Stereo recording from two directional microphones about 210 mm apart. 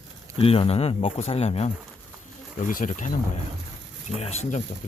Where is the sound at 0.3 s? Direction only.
25° left (ahead or behind).